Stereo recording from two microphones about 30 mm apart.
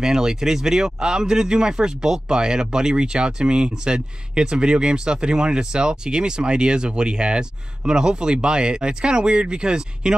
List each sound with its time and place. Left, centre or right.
0.0 s speech: right